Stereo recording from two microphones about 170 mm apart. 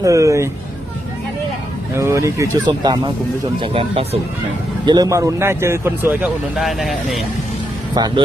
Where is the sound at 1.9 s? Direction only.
15° right (ahead or behind); by 7.2 s centre (ahead or behind).